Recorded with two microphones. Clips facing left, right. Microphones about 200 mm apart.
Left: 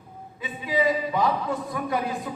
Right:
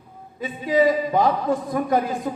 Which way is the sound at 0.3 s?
40° right (ahead or behind).